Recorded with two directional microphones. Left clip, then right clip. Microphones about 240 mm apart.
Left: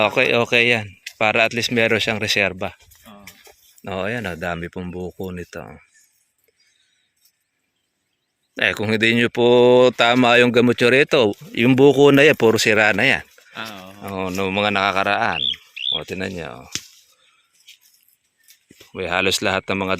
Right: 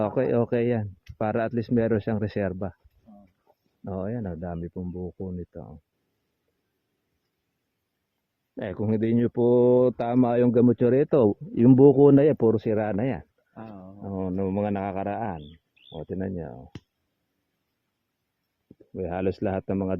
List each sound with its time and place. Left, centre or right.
0.1 s speech: centre
3.8 s speech: centre
4.8 s speech: left
5.3 s speech: centre
8.9 s speech: centre
9.4 s speech: centre
11.8 s speech: centre
12.4 s speech: left
12.6 s speech: centre
13.5 s speech: left
14.0 s speech: centre
18.9 s speech: centre